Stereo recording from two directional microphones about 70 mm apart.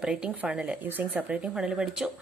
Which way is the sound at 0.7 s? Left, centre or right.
Right.